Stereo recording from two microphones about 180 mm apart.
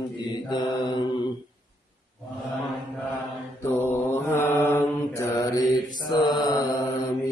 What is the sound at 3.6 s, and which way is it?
Mantra, 15° left (ahead or behind).